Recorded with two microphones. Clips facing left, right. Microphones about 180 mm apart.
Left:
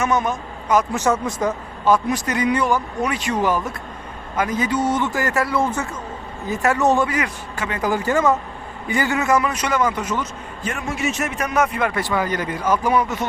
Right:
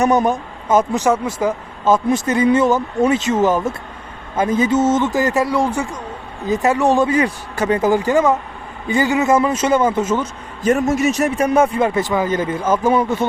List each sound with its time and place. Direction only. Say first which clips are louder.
0.0 s speech: right 6 dB; 35° right (ahead or behind)
0.9 s speech: right 3 dB; 10° right (ahead or behind)
1.8 s speech: right 3 dB; 25° right (ahead or behind)
7.1 s a man's voice: right 7 dB; 30° right (ahead or behind)
7.8 s speech: right 3 dB; 20° right (ahead or behind)
10.6 s a man's voice: right 10 dB; 40° right (ahead or behind)